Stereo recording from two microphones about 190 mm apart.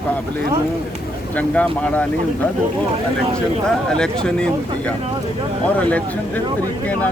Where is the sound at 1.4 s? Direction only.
10° left (ahead or behind).